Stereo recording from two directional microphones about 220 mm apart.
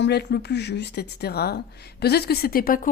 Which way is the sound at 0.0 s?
50° left (ahead or behind).